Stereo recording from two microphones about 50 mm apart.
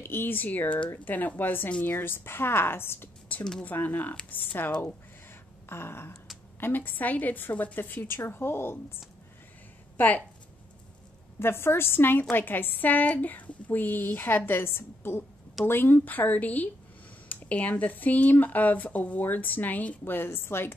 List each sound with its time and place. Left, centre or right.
0.0 s a woman's voice: left
3.6 s speech: left
5.7 s a woman's voice: left
6.6 s a woman's voice: left
9.9 s a woman's voice: left
11.3 s a woman's voice: left
20.1 s a woman's voice: left